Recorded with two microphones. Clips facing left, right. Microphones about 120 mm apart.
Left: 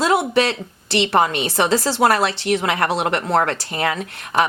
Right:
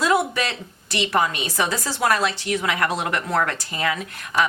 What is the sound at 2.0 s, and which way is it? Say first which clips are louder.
Speech: left 1 dB; 65° left (ahead or behind).